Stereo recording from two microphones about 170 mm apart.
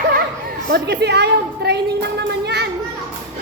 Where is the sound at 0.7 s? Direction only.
80° right.